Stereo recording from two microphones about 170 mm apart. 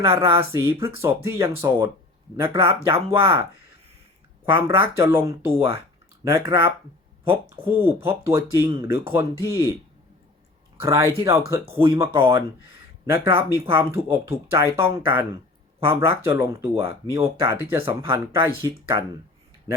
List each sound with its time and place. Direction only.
0.0 s speech: 15° right (ahead or behind)
4.5 s speech: 15° right (ahead or behind)
10.8 s speech: 15° right (ahead or behind)